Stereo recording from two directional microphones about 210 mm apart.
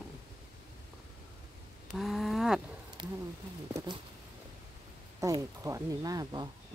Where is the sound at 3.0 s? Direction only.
20° right (ahead or behind).